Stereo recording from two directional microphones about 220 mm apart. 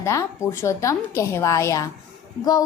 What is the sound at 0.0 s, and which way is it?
A woman's voice, 15° left (ahead or behind).